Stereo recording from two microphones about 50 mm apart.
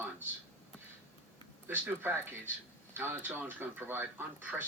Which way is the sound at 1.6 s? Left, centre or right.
Right.